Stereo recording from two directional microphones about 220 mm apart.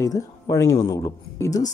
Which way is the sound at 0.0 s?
15° left (ahead or behind).